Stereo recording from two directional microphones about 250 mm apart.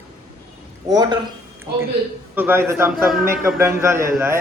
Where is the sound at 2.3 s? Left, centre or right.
Centre.